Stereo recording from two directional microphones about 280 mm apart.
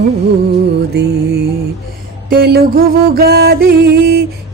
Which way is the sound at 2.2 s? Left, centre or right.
Right.